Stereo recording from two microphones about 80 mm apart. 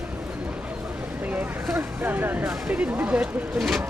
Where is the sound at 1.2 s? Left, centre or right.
Right.